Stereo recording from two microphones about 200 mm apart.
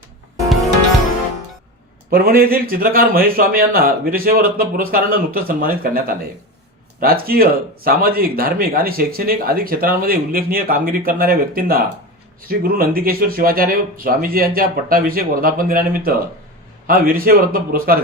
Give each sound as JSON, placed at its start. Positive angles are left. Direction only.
{"t": 2.0, "sound": "speech", "side_deg": -50}